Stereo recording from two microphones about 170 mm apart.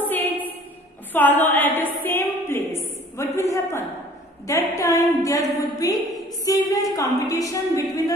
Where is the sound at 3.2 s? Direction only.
20° left (ahead or behind).